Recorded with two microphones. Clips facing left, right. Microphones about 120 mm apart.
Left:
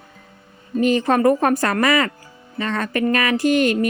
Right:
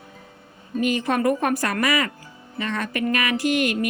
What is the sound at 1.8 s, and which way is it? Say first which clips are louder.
Speech: left 4 dB; 55° left (ahead or behind).